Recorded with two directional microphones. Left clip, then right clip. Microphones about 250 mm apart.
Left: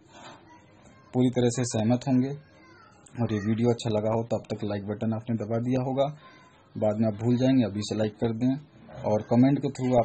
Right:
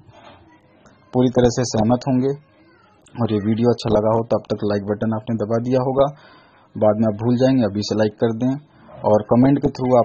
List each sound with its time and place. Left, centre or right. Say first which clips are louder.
1.1 s a man's voice: right 9 dB; right
6.8 s a man's voice: right 9 dB; right